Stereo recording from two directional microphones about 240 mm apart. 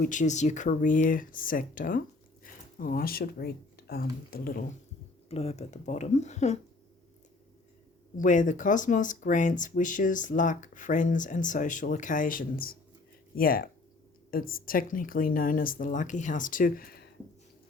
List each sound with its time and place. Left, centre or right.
0.0 s speech: left
5.3 s speech: left
8.1 s speech: left